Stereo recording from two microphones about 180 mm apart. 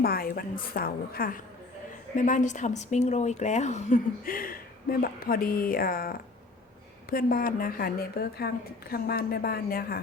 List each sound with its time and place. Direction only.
0.0 s a woman's voice: 55° left (ahead or behind)
2.1 s a woman's voice: 45° left (ahead or behind)